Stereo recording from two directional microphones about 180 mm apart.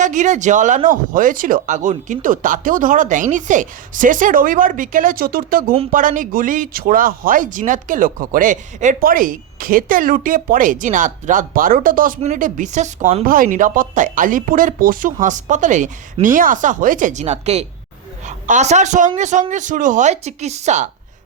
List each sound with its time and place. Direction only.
0.0 s speech: 45° right (ahead or behind)
13.2 s speech: 50° right (ahead or behind)